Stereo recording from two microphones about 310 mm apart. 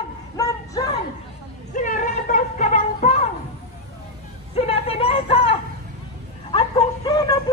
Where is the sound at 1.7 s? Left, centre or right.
Left.